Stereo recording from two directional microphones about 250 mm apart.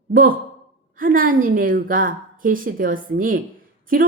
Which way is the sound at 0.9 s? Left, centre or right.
Right.